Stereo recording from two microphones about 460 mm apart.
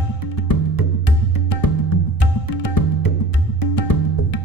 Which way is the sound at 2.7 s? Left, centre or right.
Left.